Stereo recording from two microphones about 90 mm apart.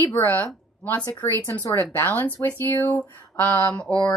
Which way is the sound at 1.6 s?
25° left (ahead or behind).